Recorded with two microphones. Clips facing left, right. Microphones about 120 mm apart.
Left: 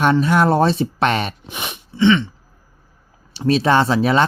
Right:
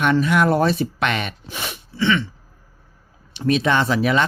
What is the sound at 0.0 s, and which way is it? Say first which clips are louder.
Speech: left 2 dB; 30° left (ahead or behind).